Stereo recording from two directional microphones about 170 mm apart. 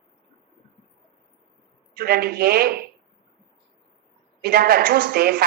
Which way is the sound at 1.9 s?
65° right (ahead or behind).